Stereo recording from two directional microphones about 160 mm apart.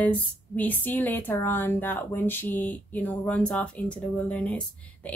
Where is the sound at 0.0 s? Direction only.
10° left (ahead or behind).